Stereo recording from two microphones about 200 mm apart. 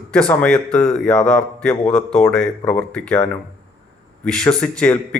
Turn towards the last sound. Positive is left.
turn(degrees=5)  # may be behind; listen again after turning